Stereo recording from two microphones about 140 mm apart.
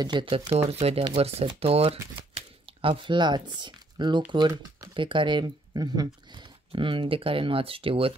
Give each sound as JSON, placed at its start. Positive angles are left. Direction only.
{"t": 0.0, "sound": "speech", "side_deg": -35}
{"t": 0.7, "sound": "speech", "side_deg": -45}
{"t": 2.3, "sound": "a sound", "side_deg": -40}
{"t": 4.3, "sound": "speech", "side_deg": -35}